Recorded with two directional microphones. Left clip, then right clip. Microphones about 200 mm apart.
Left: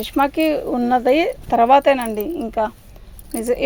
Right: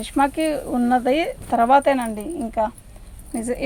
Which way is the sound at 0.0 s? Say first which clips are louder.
Left 2 dB; 45° left (ahead or behind).